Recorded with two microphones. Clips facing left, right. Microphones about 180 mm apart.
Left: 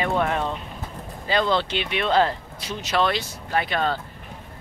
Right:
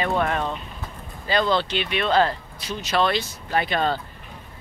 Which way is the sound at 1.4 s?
10° right (ahead or behind).